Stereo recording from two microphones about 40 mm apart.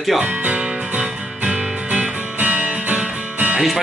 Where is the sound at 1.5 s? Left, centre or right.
Right.